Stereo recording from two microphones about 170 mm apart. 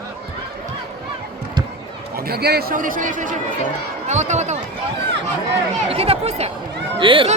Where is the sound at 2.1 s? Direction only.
65° right (ahead or behind); by 4.6 s 45° right (ahead or behind).